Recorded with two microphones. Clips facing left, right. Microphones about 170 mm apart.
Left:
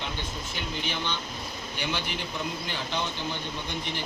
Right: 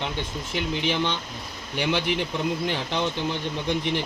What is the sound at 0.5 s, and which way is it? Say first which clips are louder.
Speech: right 9 dB; 85° right.